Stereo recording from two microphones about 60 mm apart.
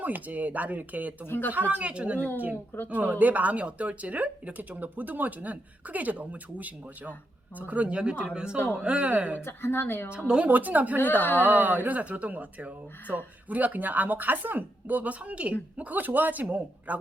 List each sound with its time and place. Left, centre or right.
0.0 s speech: right
1.3 s a woman's voice: left
1.5 s speech: right
8.5 s a woman's voice: left
8.8 s speech: centre
9.4 s a woman's voice: left
10.1 s speech: centre
10.4 s speech: right
11.2 s a woman's voice: left
11.4 s speech: right